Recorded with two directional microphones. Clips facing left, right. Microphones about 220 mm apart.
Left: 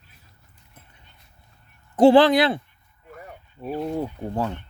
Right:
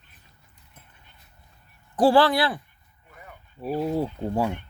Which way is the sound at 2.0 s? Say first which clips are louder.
Left 5 dB; 20° left (ahead or behind).